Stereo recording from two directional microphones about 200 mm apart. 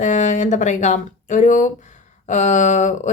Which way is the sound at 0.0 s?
35° left (ahead or behind).